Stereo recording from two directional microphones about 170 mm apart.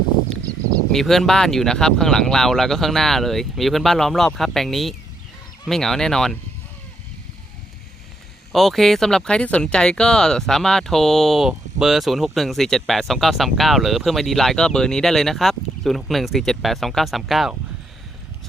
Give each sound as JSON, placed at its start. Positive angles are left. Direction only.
{"t": 0.9, "sound": "speech", "side_deg": 0}
{"t": 8.5, "sound": "speech", "side_deg": 0}